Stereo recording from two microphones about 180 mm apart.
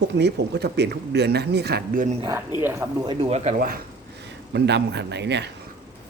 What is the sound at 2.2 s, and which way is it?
Speech, 20° right (ahead or behind).